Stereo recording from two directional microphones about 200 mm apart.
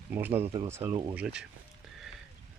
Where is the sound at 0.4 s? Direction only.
25° right (ahead or behind).